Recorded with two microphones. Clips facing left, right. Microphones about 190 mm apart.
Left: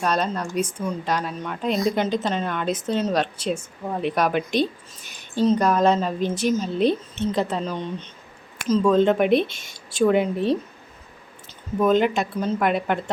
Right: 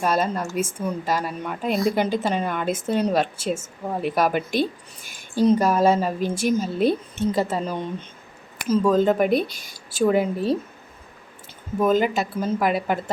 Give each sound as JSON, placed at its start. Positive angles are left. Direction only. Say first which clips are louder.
{"t": 0.0, "sound": "a woman's voice", "louder": "right 1 dB", "side_deg": -5}
{"t": 9.5, "sound": "speech", "louder": "even", "side_deg": 25}
{"t": 9.9, "sound": "speech", "louder": "left 1 dB", "side_deg": -5}
{"t": 11.8, "sound": "speech", "louder": "left 1 dB", "side_deg": -5}